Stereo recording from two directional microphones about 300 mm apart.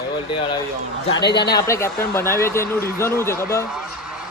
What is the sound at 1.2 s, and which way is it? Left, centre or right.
Speech, left.